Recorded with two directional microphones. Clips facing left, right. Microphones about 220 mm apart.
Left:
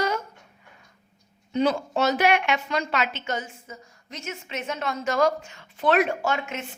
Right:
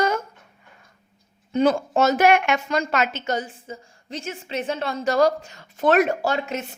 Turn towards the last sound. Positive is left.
turn(degrees=-35)  # may be behind; listen again after turning